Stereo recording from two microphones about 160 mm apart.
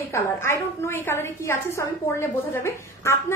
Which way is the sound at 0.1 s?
15° left (ahead or behind).